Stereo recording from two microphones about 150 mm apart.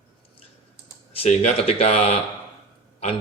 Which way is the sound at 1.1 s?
45° left (ahead or behind).